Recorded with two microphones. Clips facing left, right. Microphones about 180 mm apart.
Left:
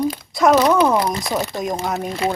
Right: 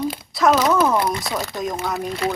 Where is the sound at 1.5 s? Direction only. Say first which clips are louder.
Left 2 dB; 30° left (ahead or behind).